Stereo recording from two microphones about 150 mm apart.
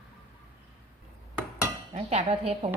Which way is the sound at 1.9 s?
45° right (ahead or behind).